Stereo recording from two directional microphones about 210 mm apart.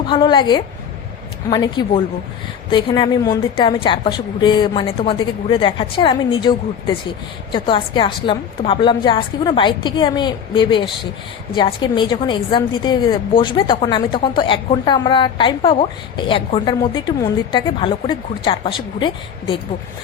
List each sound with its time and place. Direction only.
0.1 s a woman's voice: 20° left (ahead or behind)
7.5 s a woman's voice: 25° left (ahead or behind)